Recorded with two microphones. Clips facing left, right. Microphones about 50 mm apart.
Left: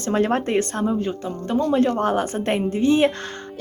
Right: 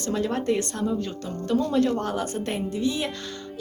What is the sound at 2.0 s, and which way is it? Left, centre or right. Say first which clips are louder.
Speech: left 6 dB; left.